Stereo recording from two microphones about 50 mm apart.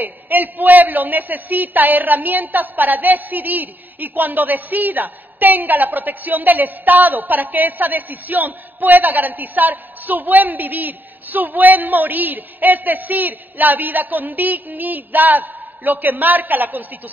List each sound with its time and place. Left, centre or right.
0.0 s a woman's voice: right